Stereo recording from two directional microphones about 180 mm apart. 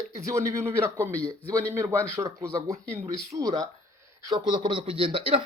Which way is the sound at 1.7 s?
15° right (ahead or behind).